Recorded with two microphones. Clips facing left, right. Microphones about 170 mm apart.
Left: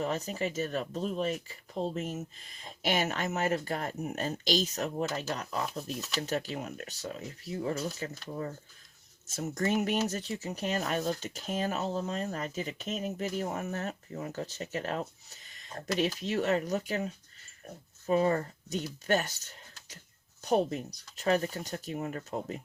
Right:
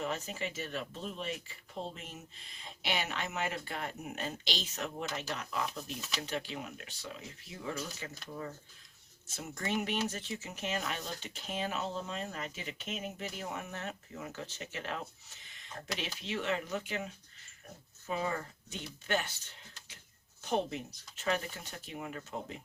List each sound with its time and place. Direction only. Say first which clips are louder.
0.0 s speech: left 5 dB; 40° left (ahead or behind)
9.2 s speech: left 8 dB; 40° left (ahead or behind)